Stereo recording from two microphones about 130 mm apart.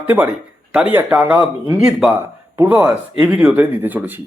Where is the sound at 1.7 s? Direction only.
5° right (ahead or behind).